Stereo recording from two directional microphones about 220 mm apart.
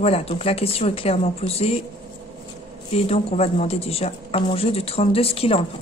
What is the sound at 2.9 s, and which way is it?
Speech, 25° left (ahead or behind).